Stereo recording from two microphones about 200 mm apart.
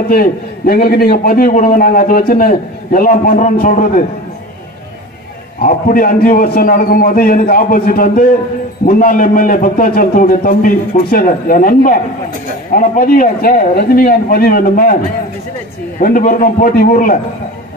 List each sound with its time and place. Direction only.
0.1 s a man's voice: 50° left (ahead or behind)
5.6 s a man's voice: 40° left (ahead or behind)
16.0 s a man's voice: 45° left (ahead or behind)